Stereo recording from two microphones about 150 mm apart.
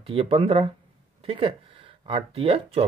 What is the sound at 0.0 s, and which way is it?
Speech, 40° right (ahead or behind).